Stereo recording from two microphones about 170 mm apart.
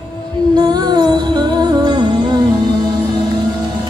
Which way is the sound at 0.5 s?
25° right (ahead or behind).